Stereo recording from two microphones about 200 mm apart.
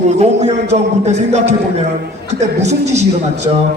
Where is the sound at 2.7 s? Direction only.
35° right (ahead or behind).